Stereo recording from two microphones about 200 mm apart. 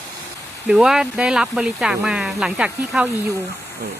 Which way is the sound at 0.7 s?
5° right (ahead or behind).